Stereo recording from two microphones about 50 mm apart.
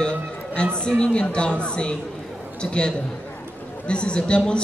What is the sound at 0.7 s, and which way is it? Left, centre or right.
A woman's voice, centre.